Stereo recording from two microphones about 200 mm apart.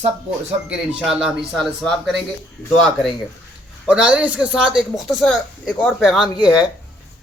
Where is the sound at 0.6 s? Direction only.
5° right (ahead or behind).